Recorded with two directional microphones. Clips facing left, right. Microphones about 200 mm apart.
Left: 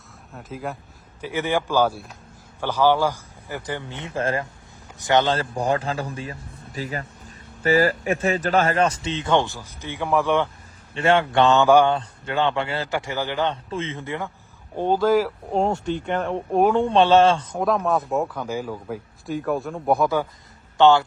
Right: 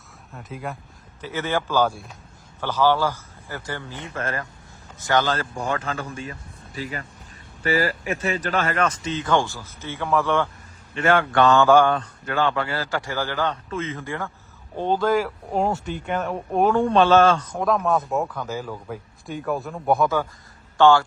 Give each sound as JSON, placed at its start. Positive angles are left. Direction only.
{"t": 0.3, "sound": "speech", "side_deg": 0}
{"t": 1.2, "sound": "a man's voice", "side_deg": 15}
{"t": 4.1, "sound": "speech", "side_deg": 30}
{"t": 5.5, "sound": "a man's voice", "side_deg": 35}
{"t": 10.9, "sound": "speech", "side_deg": 25}
{"t": 14.8, "sound": "a man's voice", "side_deg": 10}
{"t": 15.5, "sound": "speech", "side_deg": 25}
{"t": 17.6, "sound": "speech", "side_deg": 0}
{"t": 18.3, "sound": "speech", "side_deg": 10}
{"t": 20.7, "sound": "a man's voice", "side_deg": 20}